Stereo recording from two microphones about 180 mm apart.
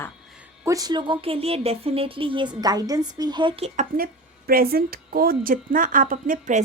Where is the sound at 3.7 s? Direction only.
50° right (ahead or behind).